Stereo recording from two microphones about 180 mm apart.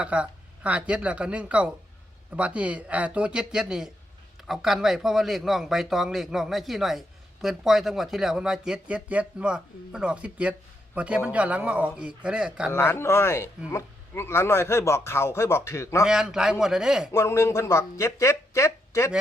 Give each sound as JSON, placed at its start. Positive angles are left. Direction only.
{"t": 0.0, "sound": "speech", "side_deg": -5}
{"t": 12.7, "sound": "a man's voice", "side_deg": 15}
{"t": 16.0, "sound": "speech", "side_deg": -5}
{"t": 17.1, "sound": "a man's voice", "side_deg": 15}